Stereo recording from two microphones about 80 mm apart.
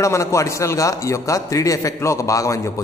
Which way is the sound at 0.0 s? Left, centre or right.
Left.